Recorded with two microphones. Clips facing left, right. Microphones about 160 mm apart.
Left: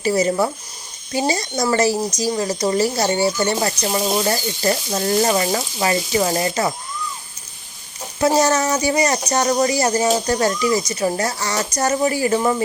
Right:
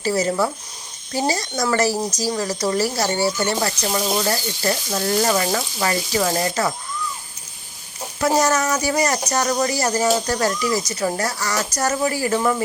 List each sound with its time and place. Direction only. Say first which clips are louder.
0.0 s speech: left 2 dB; 15° left (ahead or behind)
8.4 s speech: left 2 dB; 25° left (ahead or behind)